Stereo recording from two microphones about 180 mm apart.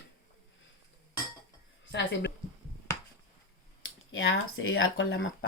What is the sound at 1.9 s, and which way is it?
Speech, 75° left (ahead or behind).